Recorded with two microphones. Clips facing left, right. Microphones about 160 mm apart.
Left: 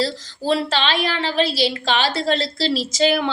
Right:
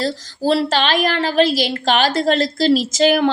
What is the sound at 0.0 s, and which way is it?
A woman's voice, 40° right (ahead or behind).